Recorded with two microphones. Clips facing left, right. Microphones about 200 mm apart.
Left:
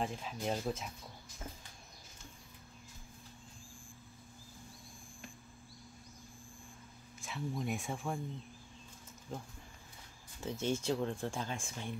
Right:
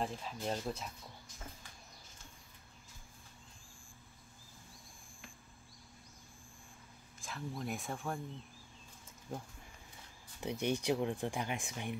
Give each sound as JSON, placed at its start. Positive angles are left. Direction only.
{"t": 0.0, "sound": "speech", "side_deg": 0}
{"t": 7.2, "sound": "speech", "side_deg": 0}
{"t": 9.3, "sound": "speech", "side_deg": -10}